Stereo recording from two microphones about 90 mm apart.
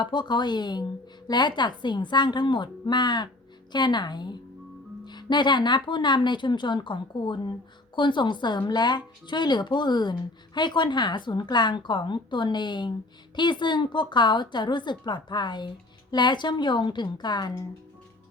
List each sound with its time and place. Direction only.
0.0 s speech: 55° left (ahead or behind)